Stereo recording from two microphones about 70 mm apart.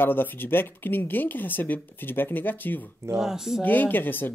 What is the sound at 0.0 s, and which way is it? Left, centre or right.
Speech, left.